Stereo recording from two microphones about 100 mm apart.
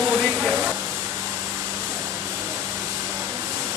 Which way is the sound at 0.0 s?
10° right (ahead or behind).